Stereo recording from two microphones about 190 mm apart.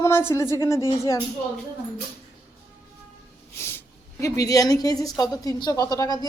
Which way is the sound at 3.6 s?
15° left (ahead or behind).